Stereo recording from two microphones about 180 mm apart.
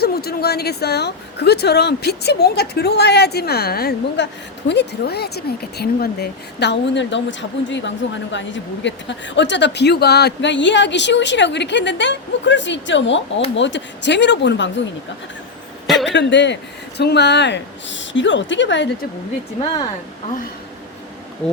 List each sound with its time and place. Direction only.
0.0 s a woman's voice: 60° left (ahead or behind); by 14.7 s 75° left (ahead or behind)
16.0 s a woman's voice: 80° left
19.6 s speech: 20° left (ahead or behind)